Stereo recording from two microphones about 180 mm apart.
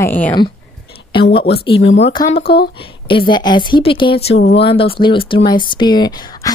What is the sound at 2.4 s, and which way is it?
Speech, 65° left (ahead or behind).